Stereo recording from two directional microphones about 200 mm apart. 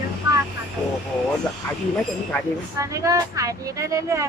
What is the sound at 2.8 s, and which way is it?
Speech, 15° right (ahead or behind).